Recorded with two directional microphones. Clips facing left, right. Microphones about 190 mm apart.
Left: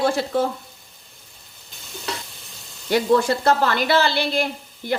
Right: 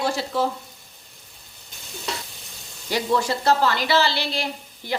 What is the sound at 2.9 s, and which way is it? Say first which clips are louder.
Speech: left 5 dB; 55° left (ahead or behind).